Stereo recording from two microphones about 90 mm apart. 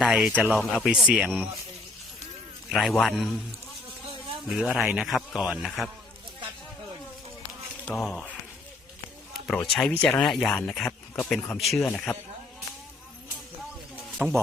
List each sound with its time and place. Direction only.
0.0 s speech: 10° right (ahead or behind)
0.3 s speech: 20° right (ahead or behind)
0.6 s speech: 5° left (ahead or behind)
0.9 s speech: 10° right (ahead or behind)
2.6 s speech: 5° right (ahead or behind)
4.4 s speech: centre (ahead or behind)
7.9 s speech: centre (ahead or behind)
9.5 s speech: 10° left (ahead or behind)
14.2 s speech: 20° right (ahead or behind)